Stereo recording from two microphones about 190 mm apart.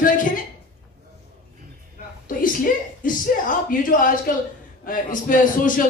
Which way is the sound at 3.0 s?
45° left (ahead or behind).